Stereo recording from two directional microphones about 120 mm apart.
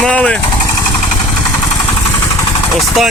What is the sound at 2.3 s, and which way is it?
Vehicle, 25° left (ahead or behind).